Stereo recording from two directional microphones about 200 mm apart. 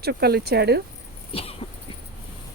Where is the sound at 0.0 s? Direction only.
50° right (ahead or behind).